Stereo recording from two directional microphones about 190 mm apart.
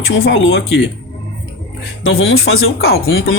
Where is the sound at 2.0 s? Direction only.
90° left.